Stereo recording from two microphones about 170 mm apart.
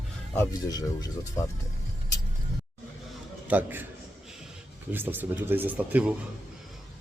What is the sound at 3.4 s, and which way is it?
Speech, 10° right (ahead or behind).